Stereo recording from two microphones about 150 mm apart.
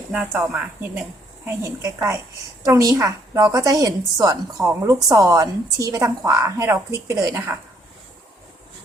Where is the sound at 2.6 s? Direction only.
20° right (ahead or behind).